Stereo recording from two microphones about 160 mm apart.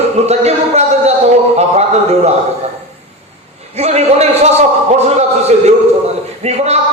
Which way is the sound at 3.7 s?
40° right (ahead or behind).